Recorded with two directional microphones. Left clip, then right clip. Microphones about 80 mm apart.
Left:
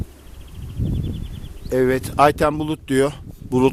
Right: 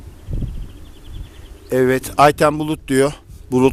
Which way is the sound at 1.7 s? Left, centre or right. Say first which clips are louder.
Right 3 dB; right.